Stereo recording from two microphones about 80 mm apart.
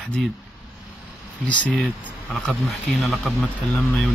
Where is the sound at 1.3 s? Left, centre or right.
Centre.